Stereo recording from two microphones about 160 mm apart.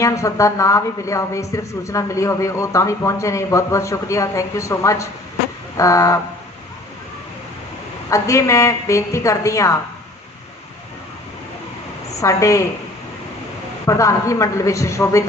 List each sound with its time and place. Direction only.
0.0 s a woman's voice: 20° left (ahead or behind)
8.1 s a woman's voice: 20° left (ahead or behind)
12.2 s a woman's voice: 20° left (ahead or behind)
13.8 s a woman's voice: 20° left (ahead or behind)